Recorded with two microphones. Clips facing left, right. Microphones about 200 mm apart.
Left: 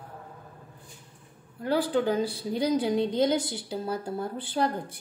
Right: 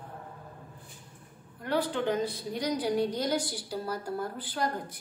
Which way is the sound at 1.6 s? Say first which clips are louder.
Left 4 dB; 35° left (ahead or behind).